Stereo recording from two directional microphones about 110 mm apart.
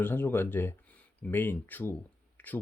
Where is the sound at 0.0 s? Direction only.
20° left (ahead or behind).